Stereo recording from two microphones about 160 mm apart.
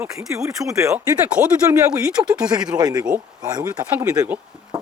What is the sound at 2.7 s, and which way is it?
Speech, 25° right (ahead or behind).